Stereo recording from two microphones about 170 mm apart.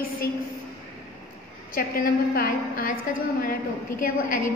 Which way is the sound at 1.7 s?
60° left (ahead or behind).